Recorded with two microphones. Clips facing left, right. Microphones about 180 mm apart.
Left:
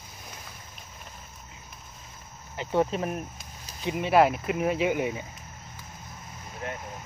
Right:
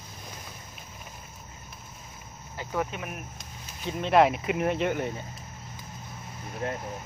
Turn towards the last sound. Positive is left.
turn(degrees=-35)  # may be behind; listen again after turning